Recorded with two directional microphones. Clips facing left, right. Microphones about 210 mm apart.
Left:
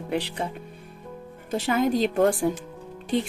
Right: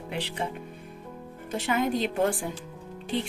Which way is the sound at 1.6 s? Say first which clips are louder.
Left 4 dB; 35° left (ahead or behind).